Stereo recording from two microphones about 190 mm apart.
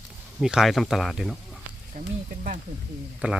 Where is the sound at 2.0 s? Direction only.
45° right (ahead or behind).